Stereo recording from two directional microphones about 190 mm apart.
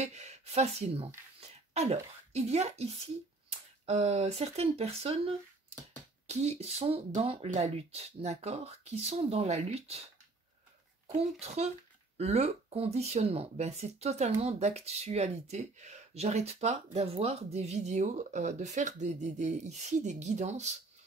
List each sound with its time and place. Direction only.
0.0 s speech: 35° right (ahead or behind)
11.1 s speech: 35° right (ahead or behind)